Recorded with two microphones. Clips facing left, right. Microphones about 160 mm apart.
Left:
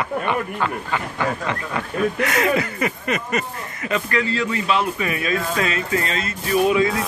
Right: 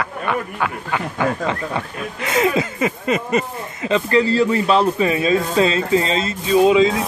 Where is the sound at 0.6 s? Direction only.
15° right (ahead or behind).